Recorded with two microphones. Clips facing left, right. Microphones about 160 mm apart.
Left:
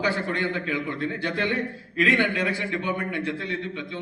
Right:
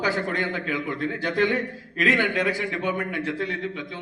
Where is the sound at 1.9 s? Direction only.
40° right (ahead or behind).